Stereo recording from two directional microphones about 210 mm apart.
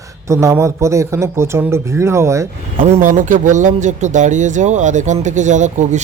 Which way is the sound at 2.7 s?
35° right (ahead or behind).